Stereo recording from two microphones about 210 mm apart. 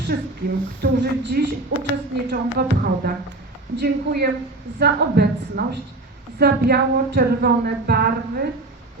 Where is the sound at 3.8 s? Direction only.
50° right (ahead or behind).